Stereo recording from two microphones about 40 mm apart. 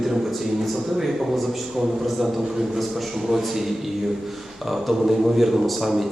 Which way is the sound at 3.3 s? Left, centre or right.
Centre.